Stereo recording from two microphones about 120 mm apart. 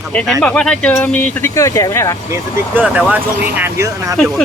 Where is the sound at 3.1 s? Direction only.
15° right (ahead or behind).